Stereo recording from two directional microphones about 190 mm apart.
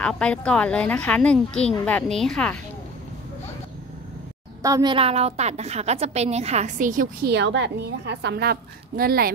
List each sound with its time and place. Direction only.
0.0 s a woman's voice: 5° left (ahead or behind)
4.6 s a child's voice: 15° right (ahead or behind)
4.9 s a woman's voice: 30° right (ahead or behind)
7.3 s a woman's voice: 65° right (ahead or behind)